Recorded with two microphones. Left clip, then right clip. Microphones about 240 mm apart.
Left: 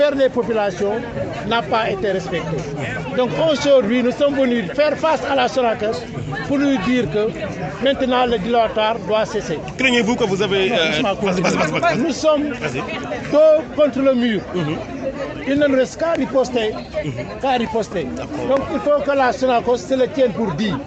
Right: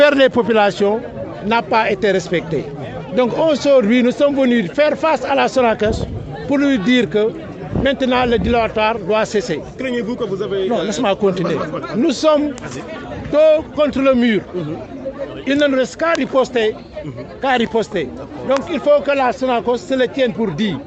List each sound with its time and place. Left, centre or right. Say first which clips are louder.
0.0 s a man's voice: right 5 dB; right
9.8 s a man's voice: left 7 dB; centre
12.0 s a man's voice: right 3 dB; right
15.4 s a man's voice: right 1 dB; right
16.1 s speech: right 2 dB; right
17.4 s speech: right 3 dB; right
18.4 s a man's voice: right 3 dB; right
19.4 s speech: left 1 dB; right
19.9 s a man's voice: even; right